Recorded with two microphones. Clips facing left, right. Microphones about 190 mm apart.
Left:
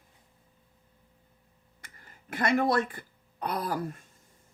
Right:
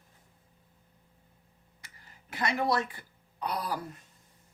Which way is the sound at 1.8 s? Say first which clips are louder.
Left 3 dB; 50° left (ahead or behind).